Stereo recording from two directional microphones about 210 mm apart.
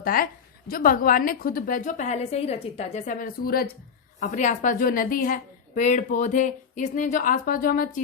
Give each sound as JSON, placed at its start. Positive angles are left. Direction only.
{"t": 0.0, "sound": "a woman's voice", "side_deg": 45}